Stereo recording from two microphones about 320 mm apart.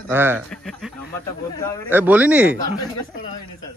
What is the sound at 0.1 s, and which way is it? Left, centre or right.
A man's voice, centre.